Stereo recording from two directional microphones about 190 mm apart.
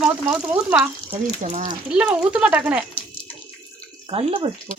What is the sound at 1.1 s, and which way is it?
Speech, 40° right (ahead or behind).